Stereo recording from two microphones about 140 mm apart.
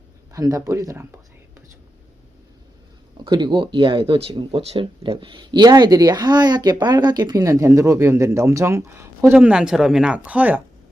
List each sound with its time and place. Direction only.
0.3 s speech: 25° right (ahead or behind)
3.2 s speech: 35° right (ahead or behind); by 10.6 s 10° right (ahead or behind)